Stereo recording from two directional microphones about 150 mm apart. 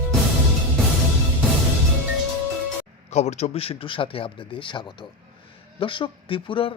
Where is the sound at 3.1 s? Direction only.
50° left (ahead or behind).